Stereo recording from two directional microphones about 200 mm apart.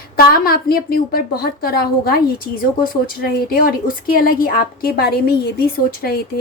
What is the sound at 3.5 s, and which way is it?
A woman's voice, 45° left (ahead or behind).